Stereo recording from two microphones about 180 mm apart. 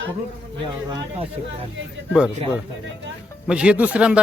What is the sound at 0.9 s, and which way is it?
Speech, 30° right (ahead or behind).